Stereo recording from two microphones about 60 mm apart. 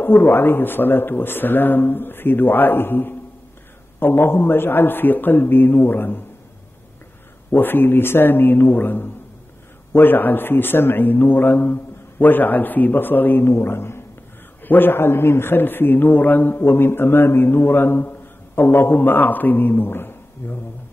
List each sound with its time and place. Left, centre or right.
0.0 s a man's voice: left
7.5 s a man's voice: left